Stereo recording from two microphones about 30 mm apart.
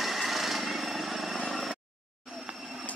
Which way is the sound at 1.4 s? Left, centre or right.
Centre.